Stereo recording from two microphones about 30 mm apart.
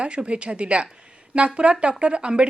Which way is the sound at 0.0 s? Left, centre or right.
Right.